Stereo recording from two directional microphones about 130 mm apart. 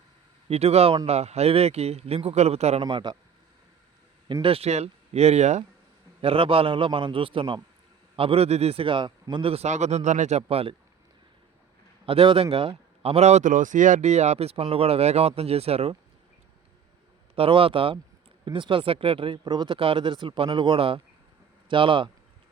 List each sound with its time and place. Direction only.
0.4 s speech: 55° right (ahead or behind)
2.8 s speech: 35° right (ahead or behind)
4.4 s speech: 50° right (ahead or behind)
6.2 s speech: 45° right (ahead or behind)
12.0 s speech: 45° right (ahead or behind)
17.3 s speech: 45° right (ahead or behind)